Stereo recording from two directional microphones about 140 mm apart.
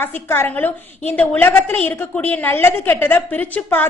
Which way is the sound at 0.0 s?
15° left (ahead or behind).